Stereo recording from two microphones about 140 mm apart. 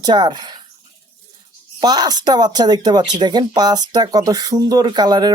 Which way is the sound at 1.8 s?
30° right (ahead or behind).